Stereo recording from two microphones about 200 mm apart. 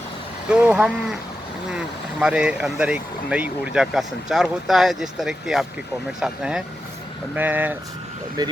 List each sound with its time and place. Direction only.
0.5 s speech: 5° right (ahead or behind)
8.4 s speech: 20° right (ahead or behind)